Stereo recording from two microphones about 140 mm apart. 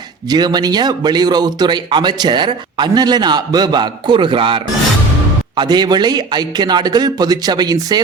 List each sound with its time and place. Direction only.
0.3 s a man's voice: 30° right (ahead or behind)